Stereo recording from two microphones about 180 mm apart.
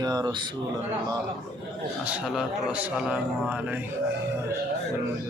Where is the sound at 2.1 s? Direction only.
5° right (ahead or behind).